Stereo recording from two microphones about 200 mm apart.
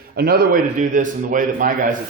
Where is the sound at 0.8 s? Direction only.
40° right (ahead or behind).